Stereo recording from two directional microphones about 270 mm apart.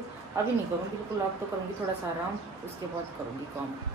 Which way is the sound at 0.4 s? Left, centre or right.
Centre.